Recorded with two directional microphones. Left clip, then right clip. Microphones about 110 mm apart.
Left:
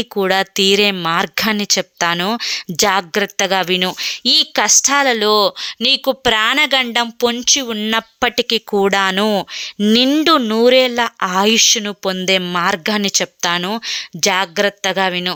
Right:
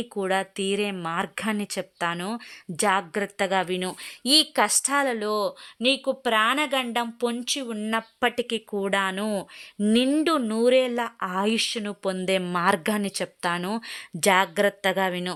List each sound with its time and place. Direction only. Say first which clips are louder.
0.2 s a woman's voice: left 11 dB; 30° left (ahead or behind)
1.8 s a woman's voice: left 11 dB; 30° left (ahead or behind)
5.2 s speech: left 13 dB; 40° left (ahead or behind); by 8.5 s 25° left (ahead or behind)
8.5 s a woman's voice: left 11 dB; 35° left (ahead or behind); by 12.2 s 20° left (ahead or behind)
12.2 s a woman's voice: left 8 dB; 10° left (ahead or behind)
13.0 s a woman's voice: left 11 dB; 20° left (ahead or behind)